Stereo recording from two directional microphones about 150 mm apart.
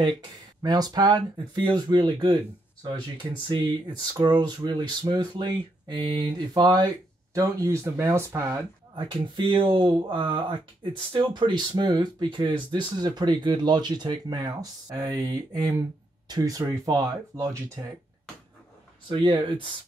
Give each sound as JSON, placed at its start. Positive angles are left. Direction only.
{"t": 0.6, "sound": "speech", "side_deg": -25}
{"t": 8.9, "sound": "speech", "side_deg": -35}
{"t": 19.0, "sound": "speech", "side_deg": -35}